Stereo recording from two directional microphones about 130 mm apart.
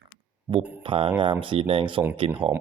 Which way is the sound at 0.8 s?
45° right (ahead or behind).